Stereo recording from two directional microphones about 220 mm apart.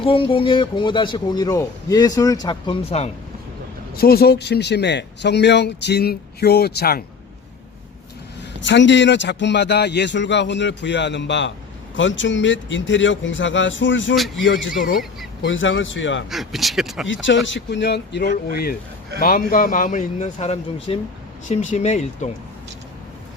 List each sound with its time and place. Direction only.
0.0 s a man's voice: 25° left (ahead or behind)
3.9 s speech: 45° left (ahead or behind)
8.6 s speech: 55° left (ahead or behind)
15.4 s speech: 60° left (ahead or behind)
16.3 s speech: centre (ahead or behind)
17.1 s a man's voice: 60° left (ahead or behind); by 22.3 s 30° left (ahead or behind)